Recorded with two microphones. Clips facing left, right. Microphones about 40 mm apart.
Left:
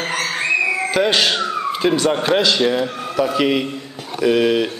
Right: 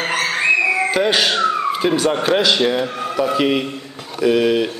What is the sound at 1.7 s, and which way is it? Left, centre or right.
Vehicle, centre.